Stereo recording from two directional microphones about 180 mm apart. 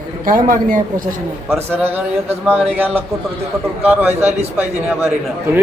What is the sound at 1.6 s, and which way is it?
Speech, 10° right (ahead or behind).